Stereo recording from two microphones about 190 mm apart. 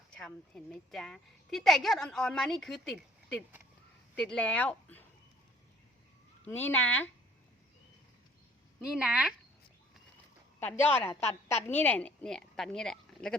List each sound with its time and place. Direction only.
0.1 s a woman's voice: 5° left (ahead or behind)
4.1 s speech: 5° left (ahead or behind)
6.4 s speech: 10° left (ahead or behind)
8.9 s a woman's voice: 5° right (ahead or behind)
10.6 s speech: 10° left (ahead or behind)
11.1 s a woman's voice: 35° left (ahead or behind)
11.4 s a woman's voice: 15° left (ahead or behind)